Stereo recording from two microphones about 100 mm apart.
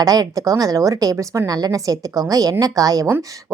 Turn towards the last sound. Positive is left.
turn(degrees=-35)  # may be behind; listen again after turning